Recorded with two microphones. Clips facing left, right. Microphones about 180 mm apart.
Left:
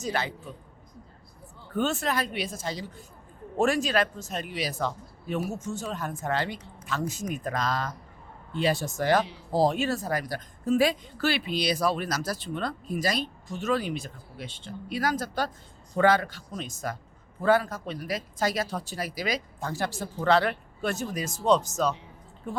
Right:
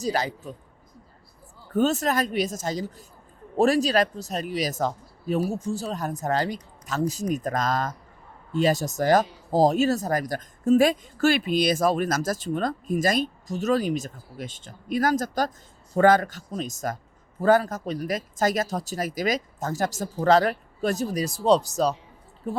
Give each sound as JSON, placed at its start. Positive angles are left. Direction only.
{"t": 0.0, "sound": "speech", "side_deg": -40}
{"t": 1.7, "sound": "a woman's voice", "side_deg": -40}